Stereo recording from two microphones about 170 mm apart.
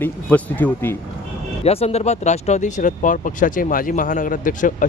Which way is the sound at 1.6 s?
35° left (ahead or behind).